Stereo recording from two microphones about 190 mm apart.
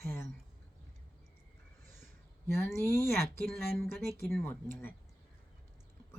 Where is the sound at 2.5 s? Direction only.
15° left (ahead or behind).